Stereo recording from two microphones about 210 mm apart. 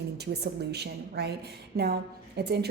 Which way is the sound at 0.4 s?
50° right (ahead or behind).